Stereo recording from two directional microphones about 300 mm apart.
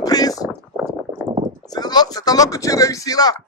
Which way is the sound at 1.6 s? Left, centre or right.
Centre.